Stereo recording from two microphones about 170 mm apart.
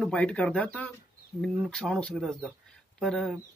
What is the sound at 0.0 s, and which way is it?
Speech, 5° left (ahead or behind).